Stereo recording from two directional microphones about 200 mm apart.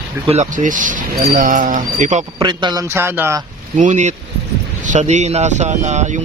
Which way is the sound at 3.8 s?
35° right (ahead or behind).